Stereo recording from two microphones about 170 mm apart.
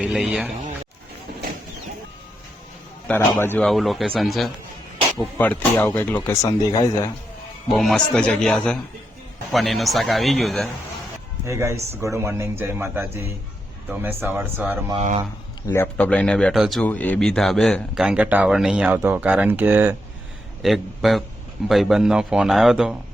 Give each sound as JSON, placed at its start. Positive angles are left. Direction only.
{"t": 0.0, "sound": "speech", "side_deg": 0}
{"t": 3.1, "sound": "speech", "side_deg": 10}
{"t": 3.7, "sound": "speech", "side_deg": 0}
{"t": 7.7, "sound": "speech", "side_deg": 0}
{"t": 11.4, "sound": "a man's voice", "side_deg": -15}
{"t": 14.9, "sound": "speech", "side_deg": -40}
{"t": 15.6, "sound": "a man's voice", "side_deg": 15}
{"t": 20.6, "sound": "a man's voice", "side_deg": 0}